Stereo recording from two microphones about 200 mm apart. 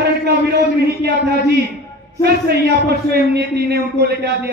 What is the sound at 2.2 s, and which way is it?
A man's voice, 55° right (ahead or behind).